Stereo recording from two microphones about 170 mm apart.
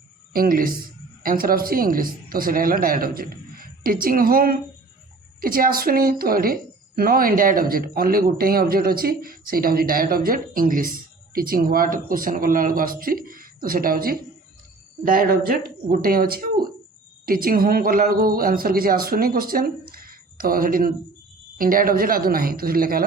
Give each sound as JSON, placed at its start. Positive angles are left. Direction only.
{"t": 0.3, "sound": "a woman's voice", "side_deg": -60}